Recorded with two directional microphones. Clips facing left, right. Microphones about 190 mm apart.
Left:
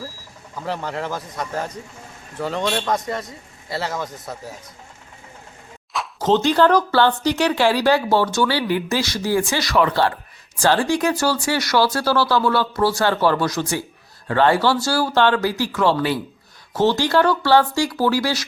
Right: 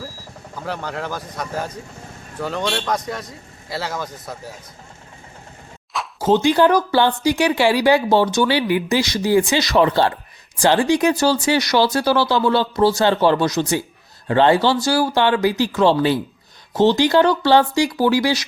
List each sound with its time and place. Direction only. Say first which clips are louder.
0.6 s speech: left 1 dB; centre (ahead or behind)
5.9 s speech: right 1 dB; 5° right (ahead or behind)